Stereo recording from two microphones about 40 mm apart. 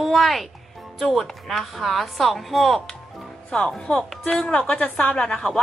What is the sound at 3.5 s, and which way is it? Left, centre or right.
Speech, left.